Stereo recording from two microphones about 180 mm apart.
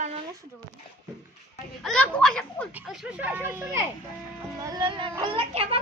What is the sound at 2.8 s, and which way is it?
A child's voice, centre (ahead or behind).